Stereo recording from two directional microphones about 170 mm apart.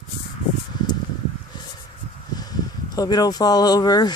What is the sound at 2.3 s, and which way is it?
Speech, 25° left (ahead or behind).